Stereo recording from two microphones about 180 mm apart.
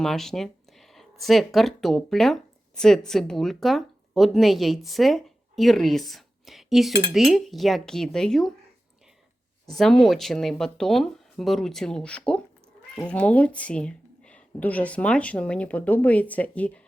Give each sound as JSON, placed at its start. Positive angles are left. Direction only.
{"t": 0.0, "sound": "a sound", "side_deg": 0}
{"t": 1.2, "sound": "speech", "side_deg": 0}
{"t": 9.7, "sound": "speech", "side_deg": 0}